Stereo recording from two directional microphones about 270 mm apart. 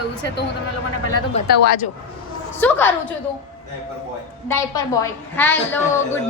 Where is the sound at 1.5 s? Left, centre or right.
Left.